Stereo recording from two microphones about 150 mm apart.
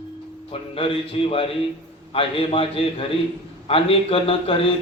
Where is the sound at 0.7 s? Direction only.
40° left (ahead or behind).